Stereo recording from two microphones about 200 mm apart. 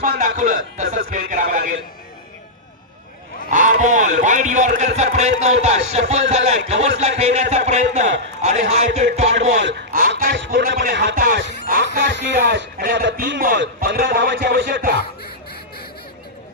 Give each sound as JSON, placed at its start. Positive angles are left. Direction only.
{"t": 0.4, "sound": "a man's voice", "side_deg": -40}
{"t": 3.4, "sound": "a man's voice", "side_deg": -40}
{"t": 9.9, "sound": "speech", "side_deg": -45}
{"t": 10.4, "sound": "speech", "side_deg": -60}
{"t": 11.9, "sound": "a man's voice", "side_deg": -60}